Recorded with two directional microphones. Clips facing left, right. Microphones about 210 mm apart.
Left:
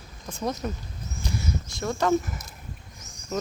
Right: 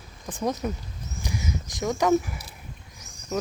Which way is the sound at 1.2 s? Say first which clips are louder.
Left 1 dB; 15° right (ahead or behind).